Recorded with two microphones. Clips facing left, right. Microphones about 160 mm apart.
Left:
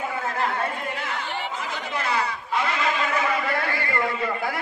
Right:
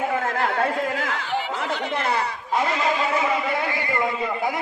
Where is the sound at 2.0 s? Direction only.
50° right (ahead or behind).